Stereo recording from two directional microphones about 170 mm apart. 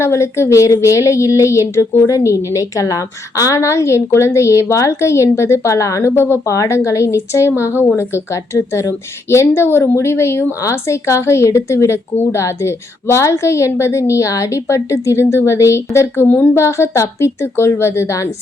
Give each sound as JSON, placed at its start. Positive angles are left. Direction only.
{"t": 0.0, "sound": "a woman's voice", "side_deg": 15}